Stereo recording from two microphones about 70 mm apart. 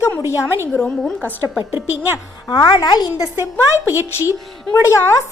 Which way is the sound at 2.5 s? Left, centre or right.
Left.